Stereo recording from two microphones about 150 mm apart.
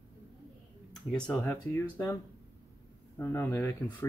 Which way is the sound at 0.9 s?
Centre (ahead or behind).